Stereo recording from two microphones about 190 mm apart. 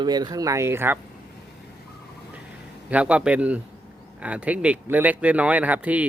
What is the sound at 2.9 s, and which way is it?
Speech, 5° right (ahead or behind).